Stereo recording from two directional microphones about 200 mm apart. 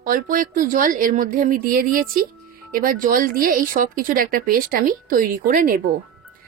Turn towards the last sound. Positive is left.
turn(degrees=-45)  # may be behind; listen again after turning